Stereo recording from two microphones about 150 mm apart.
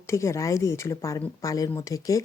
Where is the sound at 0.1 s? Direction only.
20° left (ahead or behind).